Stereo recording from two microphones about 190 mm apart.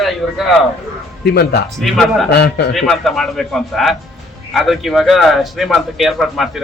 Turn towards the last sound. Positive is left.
turn(degrees=0)  # may be behind; listen again after turning